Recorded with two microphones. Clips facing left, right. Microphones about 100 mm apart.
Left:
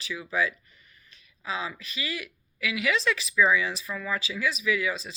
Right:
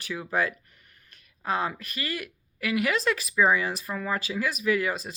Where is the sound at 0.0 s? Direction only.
55° right (ahead or behind).